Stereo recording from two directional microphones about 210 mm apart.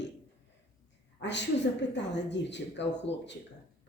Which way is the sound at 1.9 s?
55° left (ahead or behind).